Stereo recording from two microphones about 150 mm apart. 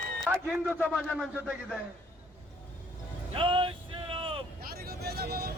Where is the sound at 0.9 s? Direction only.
10° left (ahead or behind).